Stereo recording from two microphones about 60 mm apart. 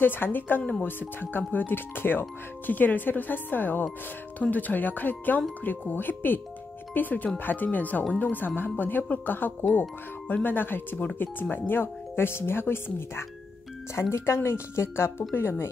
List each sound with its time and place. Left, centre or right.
0.0 s speech: left